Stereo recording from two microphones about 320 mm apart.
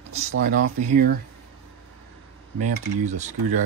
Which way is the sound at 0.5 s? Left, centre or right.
Right.